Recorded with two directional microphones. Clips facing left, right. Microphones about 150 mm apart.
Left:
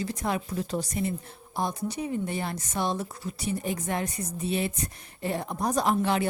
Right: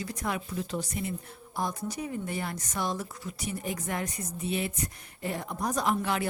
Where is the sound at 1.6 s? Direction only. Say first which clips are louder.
Left 3 dB; 25° left (ahead or behind).